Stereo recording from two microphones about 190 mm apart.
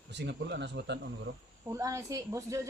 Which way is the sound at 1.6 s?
15° right (ahead or behind).